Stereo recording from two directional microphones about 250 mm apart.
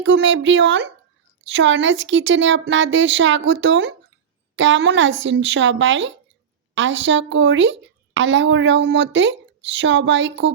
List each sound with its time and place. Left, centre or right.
0.0 s a woman's voice: right